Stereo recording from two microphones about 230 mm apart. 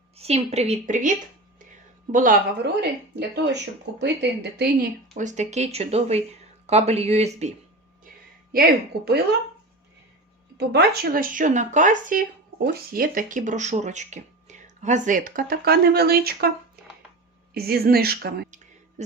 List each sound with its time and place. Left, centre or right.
0.2 s a woman's voice: right
2.1 s speech: right
3.2 s a woman's voice: right
8.5 s speech: right
10.6 s speech: right
17.5 s speech: right